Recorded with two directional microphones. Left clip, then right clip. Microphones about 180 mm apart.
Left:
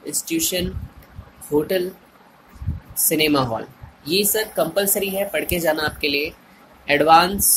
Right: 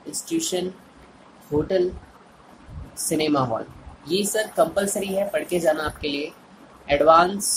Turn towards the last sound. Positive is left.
turn(degrees=30)  # may be behind; listen again after turning